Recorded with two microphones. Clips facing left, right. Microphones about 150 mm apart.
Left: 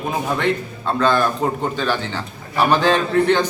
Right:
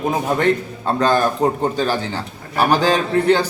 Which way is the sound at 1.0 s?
40° right (ahead or behind).